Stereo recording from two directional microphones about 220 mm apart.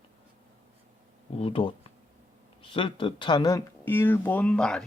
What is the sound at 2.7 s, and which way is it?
Speech, 25° left (ahead or behind).